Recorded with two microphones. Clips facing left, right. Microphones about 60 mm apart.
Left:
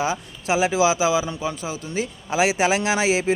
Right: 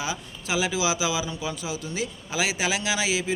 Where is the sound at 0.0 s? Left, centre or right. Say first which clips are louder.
Left 7 dB; left.